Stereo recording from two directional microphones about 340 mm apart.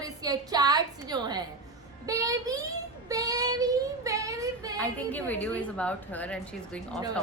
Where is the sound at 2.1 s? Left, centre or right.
Centre.